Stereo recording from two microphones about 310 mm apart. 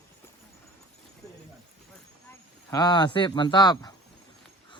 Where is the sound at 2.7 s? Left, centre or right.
Centre.